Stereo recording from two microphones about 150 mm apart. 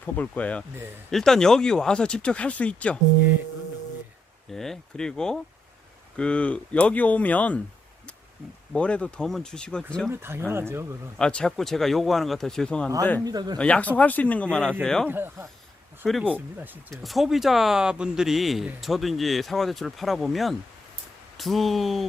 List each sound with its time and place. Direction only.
0.0 s speech: 10° left (ahead or behind)
4.5 s speech: 5° left (ahead or behind)
8.7 s speech: 5° left (ahead or behind)
10.1 s speech: 15° right (ahead or behind)
11.2 s speech: 5° left (ahead or behind)
13.2 s speech: 25° right (ahead or behind)
13.6 s speech: 10° left (ahead or behind)
15.0 s speech: 15° right (ahead or behind)
16.0 s speech: centre (ahead or behind)